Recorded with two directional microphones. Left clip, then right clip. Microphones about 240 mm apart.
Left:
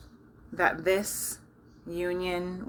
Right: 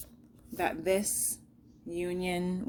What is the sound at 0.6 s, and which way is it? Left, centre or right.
Speech, right.